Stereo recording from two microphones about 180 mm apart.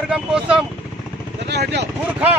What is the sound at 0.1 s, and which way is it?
Speech, 5° right (ahead or behind).